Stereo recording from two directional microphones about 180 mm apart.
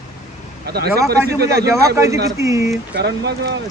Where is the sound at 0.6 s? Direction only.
60° right (ahead or behind).